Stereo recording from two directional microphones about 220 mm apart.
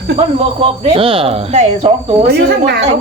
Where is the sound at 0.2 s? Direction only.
30° right (ahead or behind).